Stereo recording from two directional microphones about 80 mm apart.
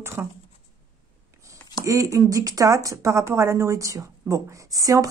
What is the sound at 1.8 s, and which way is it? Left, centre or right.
A woman's voice, right.